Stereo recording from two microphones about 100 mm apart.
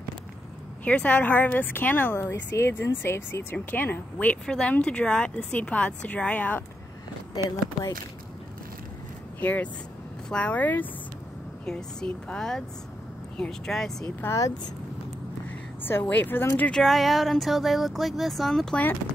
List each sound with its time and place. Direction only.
0.8 s speech: 15° left (ahead or behind)
9.4 s speech: 15° left (ahead or behind)
14.2 s speech: 30° left (ahead or behind)
15.8 s speech: 20° left (ahead or behind)
16.7 s speech: centre (ahead or behind)